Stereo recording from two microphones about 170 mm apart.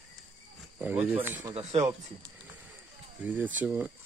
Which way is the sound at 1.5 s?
40° right (ahead or behind).